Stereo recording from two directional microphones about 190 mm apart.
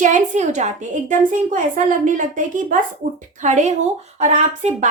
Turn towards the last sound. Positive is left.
turn(degrees=-40)  # may be behind; listen again after turning